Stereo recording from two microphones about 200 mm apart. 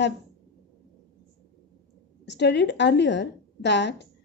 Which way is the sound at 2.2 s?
60° left (ahead or behind).